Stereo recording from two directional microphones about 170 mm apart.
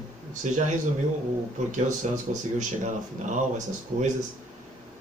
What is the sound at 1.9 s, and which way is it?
Speech, 45° right (ahead or behind).